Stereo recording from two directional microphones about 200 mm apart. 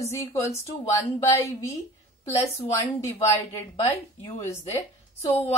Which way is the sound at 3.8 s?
30° left (ahead or behind).